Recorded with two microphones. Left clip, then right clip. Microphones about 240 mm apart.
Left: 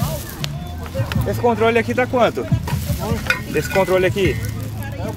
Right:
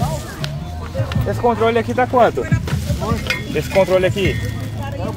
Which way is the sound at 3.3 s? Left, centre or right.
Centre.